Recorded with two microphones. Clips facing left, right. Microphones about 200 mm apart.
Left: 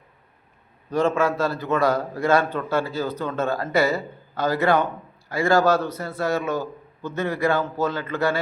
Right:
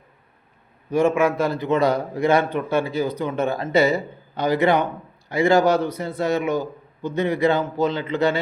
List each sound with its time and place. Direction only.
0.9 s a man's voice: 10° right (ahead or behind)